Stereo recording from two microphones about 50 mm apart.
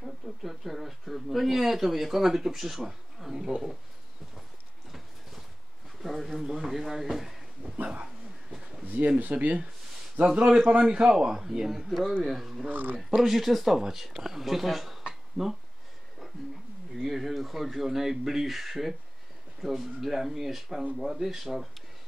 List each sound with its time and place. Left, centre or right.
0.0 s speech: centre
6.0 s a sound: centre
7.7 s speech: right
8.5 s a sound: centre
9.2 s speech: right
10.2 s a man's voice: centre
12.6 s speech: right
13.2 s speech: centre
15.0 s a sound: centre
17.0 s speech: centre